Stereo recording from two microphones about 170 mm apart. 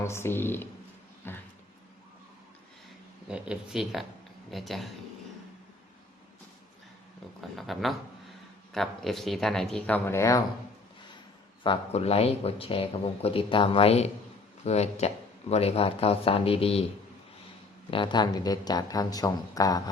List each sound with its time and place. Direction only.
0.0 s speech: 15° left (ahead or behind)
1.2 s a sound: 15° left (ahead or behind)
3.2 s speech: 5° right (ahead or behind)
7.5 s speech: centre (ahead or behind); by 10.4 s 20° left (ahead or behind)
11.6 s speech: 35° left (ahead or behind)
17.9 s speech: 25° left (ahead or behind)